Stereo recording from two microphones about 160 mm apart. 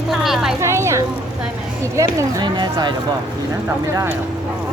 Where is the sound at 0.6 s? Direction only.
15° right (ahead or behind).